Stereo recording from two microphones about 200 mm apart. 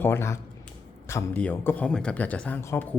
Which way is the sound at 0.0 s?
10° left (ahead or behind).